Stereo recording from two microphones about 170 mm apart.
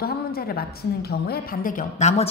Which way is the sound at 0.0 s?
65° left (ahead or behind).